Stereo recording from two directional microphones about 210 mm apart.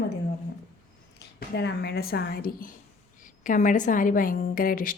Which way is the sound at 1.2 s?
55° left (ahead or behind).